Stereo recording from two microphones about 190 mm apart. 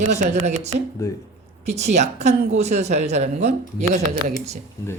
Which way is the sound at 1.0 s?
15° left (ahead or behind).